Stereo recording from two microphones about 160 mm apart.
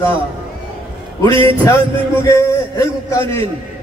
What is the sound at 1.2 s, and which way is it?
Speech, 35° right (ahead or behind).